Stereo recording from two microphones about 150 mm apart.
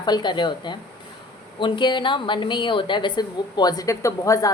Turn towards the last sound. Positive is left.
turn(degrees=20)  # may be behind; listen again after turning